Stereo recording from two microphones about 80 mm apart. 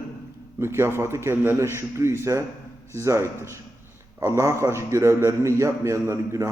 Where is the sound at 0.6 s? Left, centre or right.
Right.